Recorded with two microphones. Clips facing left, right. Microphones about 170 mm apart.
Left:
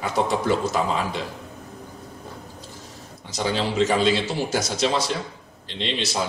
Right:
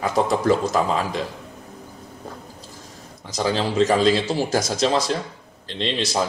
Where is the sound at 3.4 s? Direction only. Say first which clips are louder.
Right 2 dB; 40° right (ahead or behind).